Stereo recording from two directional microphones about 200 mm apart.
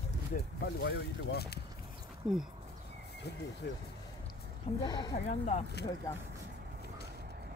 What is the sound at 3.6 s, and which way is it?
Speech, 60° left (ahead or behind).